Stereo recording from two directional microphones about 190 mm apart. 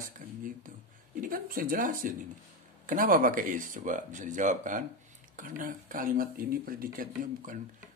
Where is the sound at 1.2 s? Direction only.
50° right (ahead or behind).